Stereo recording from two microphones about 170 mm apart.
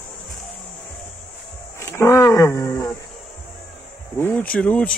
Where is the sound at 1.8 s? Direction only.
15° left (ahead or behind).